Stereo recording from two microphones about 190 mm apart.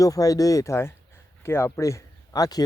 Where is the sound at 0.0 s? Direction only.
20° left (ahead or behind).